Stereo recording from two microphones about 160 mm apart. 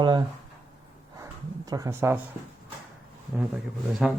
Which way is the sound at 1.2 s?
20° right (ahead or behind).